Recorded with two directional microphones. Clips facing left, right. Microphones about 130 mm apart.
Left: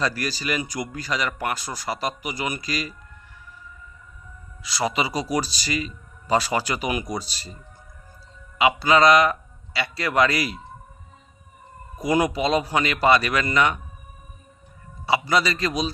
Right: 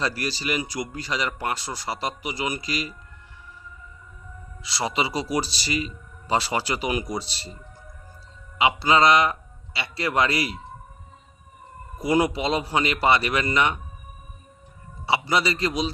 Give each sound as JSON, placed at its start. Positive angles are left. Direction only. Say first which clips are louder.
{"t": 0.0, "sound": "a man's voice", "louder": "left 1 dB", "side_deg": -25}
{"t": 4.6, "sound": "a man's voice", "louder": "left 1 dB", "side_deg": -30}
{"t": 12.0, "sound": "a man's voice", "louder": "left 1 dB", "side_deg": -25}
{"t": 15.0, "sound": "a man's voice", "louder": "left 1 dB", "side_deg": -25}